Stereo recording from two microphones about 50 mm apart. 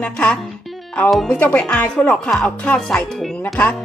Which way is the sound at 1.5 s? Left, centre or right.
Left.